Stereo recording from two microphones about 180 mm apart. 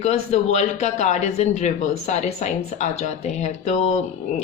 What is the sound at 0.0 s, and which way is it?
Speech, 40° left (ahead or behind).